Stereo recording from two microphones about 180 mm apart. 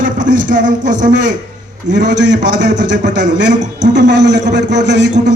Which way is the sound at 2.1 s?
75° right (ahead or behind).